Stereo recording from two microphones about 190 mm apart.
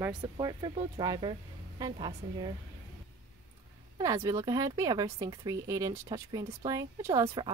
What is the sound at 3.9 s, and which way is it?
Speech, 15° right (ahead or behind).